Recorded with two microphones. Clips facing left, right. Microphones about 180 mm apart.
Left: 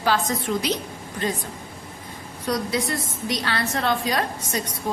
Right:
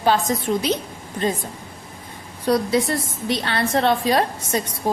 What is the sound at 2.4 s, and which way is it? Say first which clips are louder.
A woman's voice: right 6 dB; 30° right (ahead or behind).